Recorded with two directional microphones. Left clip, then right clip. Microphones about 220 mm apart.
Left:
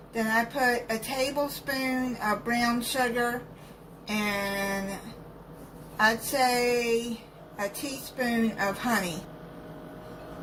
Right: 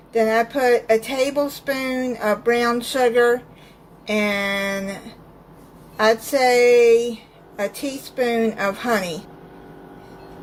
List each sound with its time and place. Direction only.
0.3 s a woman's voice: 45° right (ahead or behind)
6.0 s a woman's voice: 45° right (ahead or behind)